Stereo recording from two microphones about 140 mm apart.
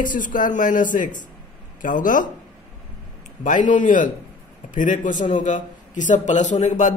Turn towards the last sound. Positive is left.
turn(degrees=60)  # may be behind; listen again after turning